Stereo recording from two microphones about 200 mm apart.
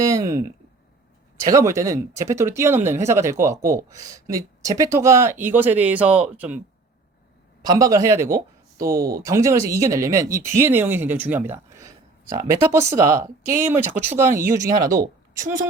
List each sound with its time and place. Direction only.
0.0 s speech: 15° right (ahead or behind)
7.6 s speech: 20° right (ahead or behind)